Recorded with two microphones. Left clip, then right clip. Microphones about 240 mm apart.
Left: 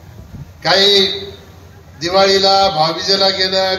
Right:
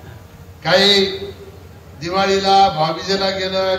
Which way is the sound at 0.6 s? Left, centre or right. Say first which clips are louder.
Left 2 dB; left.